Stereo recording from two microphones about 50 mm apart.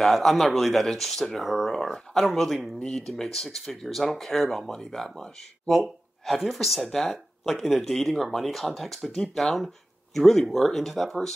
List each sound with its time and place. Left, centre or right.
0.0 s speech: centre
2.8 s speech: centre